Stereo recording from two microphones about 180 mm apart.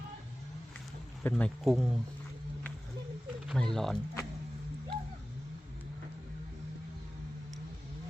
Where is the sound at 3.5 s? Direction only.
Centre (ahead or behind).